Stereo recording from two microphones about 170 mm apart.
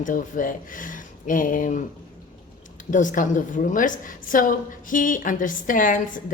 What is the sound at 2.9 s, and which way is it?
A woman's voice, 50° left (ahead or behind).